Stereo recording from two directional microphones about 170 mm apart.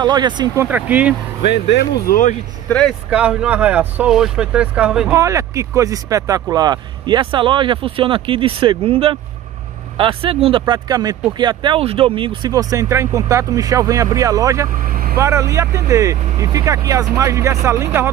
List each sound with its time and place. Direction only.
0.0 s speech: 25° right (ahead or behind)
0.7 s speech: 10° right (ahead or behind)
1.5 s speech: 90° left
2.7 s speech: centre (ahead or behind)
5.1 s speech: 20° right (ahead or behind); by 10.6 s 35° right (ahead or behind)
10.6 s speech: 20° right (ahead or behind)
14.9 s vehicle: 60° right (ahead or behind)
15.1 s speech: 15° right (ahead or behind)